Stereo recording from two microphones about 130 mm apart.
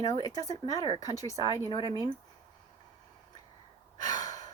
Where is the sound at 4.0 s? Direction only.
30° left (ahead or behind).